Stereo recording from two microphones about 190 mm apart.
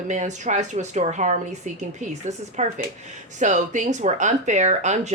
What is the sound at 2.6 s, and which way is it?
Speech, 40° right (ahead or behind).